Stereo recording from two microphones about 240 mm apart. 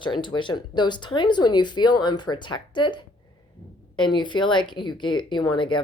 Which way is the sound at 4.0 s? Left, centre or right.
Centre.